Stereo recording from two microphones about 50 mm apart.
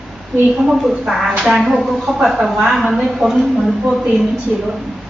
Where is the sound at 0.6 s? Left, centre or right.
Centre.